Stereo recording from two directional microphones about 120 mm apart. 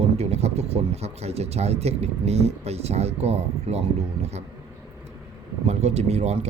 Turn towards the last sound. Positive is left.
turn(degrees=-65)  # may be behind; listen again after turning